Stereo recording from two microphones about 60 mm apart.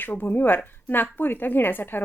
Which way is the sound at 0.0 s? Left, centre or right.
Left.